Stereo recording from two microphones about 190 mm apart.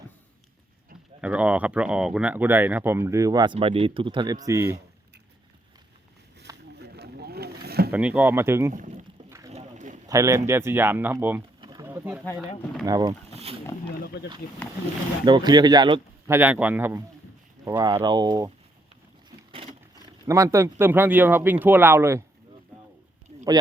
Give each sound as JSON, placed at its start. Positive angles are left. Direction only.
{"t": 1.2, "sound": "speech", "side_deg": -5}
{"t": 6.7, "sound": "boat", "side_deg": -60}
{"t": 7.9, "sound": "speech", "side_deg": -10}
{"t": 8.7, "sound": "rowboat", "side_deg": -40}
{"t": 9.5, "sound": "a sound", "side_deg": -40}
{"t": 10.1, "sound": "speech", "side_deg": -15}
{"t": 11.6, "sound": "a sound", "side_deg": -20}
{"t": 11.9, "sound": "speech", "side_deg": -10}
{"t": 12.8, "sound": "speech", "side_deg": -20}
{"t": 13.3, "sound": "wild animals", "side_deg": -30}
{"t": 14.0, "sound": "a sound", "side_deg": 55}
{"t": 15.2, "sound": "speech", "side_deg": -25}
{"t": 20.2, "sound": "speech", "side_deg": -15}